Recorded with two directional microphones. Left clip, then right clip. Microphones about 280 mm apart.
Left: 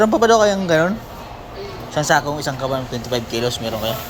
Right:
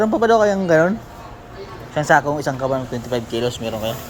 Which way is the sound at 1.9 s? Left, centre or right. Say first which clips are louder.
Right 2 dB; centre.